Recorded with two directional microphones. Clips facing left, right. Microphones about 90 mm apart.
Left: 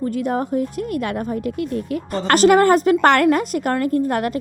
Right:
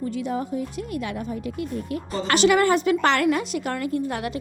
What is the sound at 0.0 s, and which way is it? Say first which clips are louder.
A woman's voice: left 6 dB; 50° left (ahead or behind).